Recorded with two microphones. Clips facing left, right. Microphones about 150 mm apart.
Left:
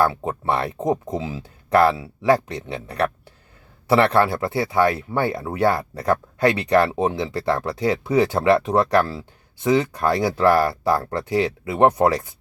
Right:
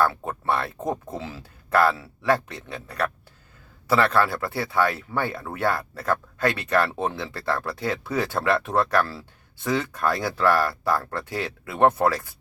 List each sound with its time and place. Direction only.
0.0 s speech: 20° left (ahead or behind)